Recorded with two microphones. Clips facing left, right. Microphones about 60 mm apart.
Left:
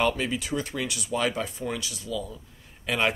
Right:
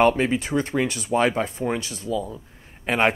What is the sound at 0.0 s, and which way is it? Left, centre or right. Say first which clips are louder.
Speech: right 7 dB; right.